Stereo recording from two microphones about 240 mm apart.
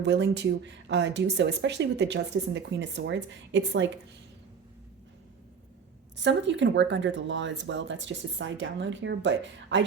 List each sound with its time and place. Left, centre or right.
0.0 s speech: right
6.1 s speech: right